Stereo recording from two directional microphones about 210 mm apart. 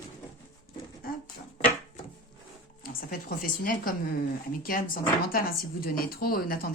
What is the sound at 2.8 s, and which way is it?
A woman's voice, 45° left (ahead or behind).